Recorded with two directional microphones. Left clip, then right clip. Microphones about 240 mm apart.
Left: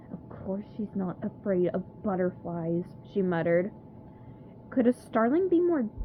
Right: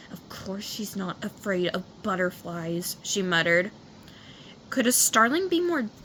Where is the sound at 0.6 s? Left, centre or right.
Centre.